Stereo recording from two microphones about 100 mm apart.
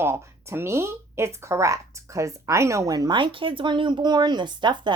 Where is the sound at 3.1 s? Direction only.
55° right (ahead or behind).